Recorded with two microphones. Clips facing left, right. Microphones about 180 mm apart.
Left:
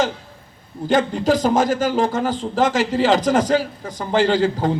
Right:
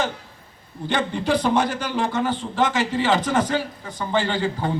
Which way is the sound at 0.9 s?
40° left (ahead or behind).